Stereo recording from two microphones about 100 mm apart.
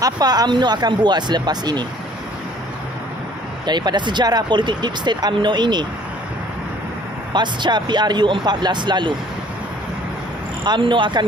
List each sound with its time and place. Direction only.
0.0 s speech: 40° right (ahead or behind)
3.6 s speech: 45° right (ahead or behind)
7.3 s speech: 50° right (ahead or behind)
10.6 s speech: 50° right (ahead or behind)